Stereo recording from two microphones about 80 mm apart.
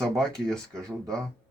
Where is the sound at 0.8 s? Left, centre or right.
Right.